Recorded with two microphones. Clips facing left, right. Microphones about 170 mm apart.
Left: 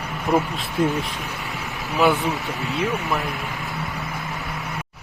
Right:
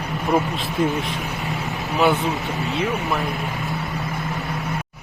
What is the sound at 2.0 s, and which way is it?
Speech, centre (ahead or behind).